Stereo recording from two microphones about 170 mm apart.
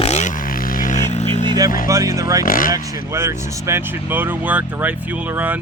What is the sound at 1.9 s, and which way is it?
Speech, 20° right (ahead or behind).